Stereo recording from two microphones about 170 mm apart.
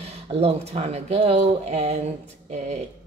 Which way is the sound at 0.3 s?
35° right (ahead or behind).